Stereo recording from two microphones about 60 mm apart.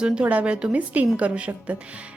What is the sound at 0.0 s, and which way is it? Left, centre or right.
A woman's voice, right.